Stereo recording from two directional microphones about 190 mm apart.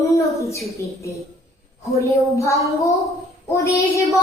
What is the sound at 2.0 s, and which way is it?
Speech, 15° left (ahead or behind).